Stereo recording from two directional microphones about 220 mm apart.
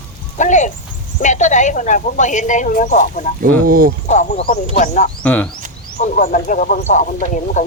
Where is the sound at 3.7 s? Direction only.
40° right (ahead or behind).